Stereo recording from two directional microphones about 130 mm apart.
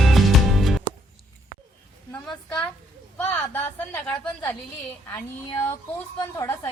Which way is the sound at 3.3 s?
15° left (ahead or behind).